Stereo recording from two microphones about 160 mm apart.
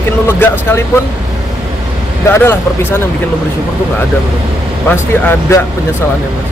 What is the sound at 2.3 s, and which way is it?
Speech, 15° left (ahead or behind).